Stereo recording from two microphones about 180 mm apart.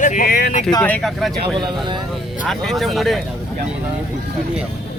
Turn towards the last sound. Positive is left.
turn(degrees=0)  # may be behind; listen again after turning